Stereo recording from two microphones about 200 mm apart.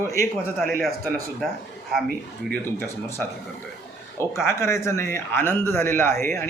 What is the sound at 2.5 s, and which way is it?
A man's voice, 10° left (ahead or behind).